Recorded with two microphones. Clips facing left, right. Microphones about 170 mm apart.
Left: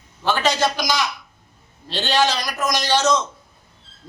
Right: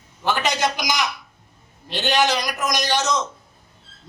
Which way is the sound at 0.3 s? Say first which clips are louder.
Left 2 dB; 20° right (ahead or behind).